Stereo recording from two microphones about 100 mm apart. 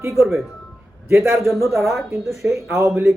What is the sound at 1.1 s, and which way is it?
Speech, 25° right (ahead or behind).